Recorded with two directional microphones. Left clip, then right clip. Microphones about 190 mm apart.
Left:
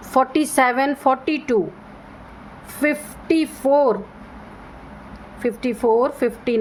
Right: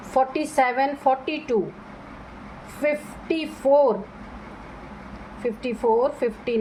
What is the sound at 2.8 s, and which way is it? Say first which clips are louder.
Speech: left 3 dB; 40° left (ahead or behind).